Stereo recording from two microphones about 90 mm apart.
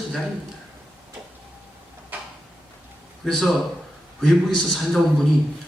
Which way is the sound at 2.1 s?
15° right (ahead or behind).